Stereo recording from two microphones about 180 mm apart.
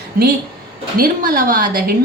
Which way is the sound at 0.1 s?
55° right (ahead or behind).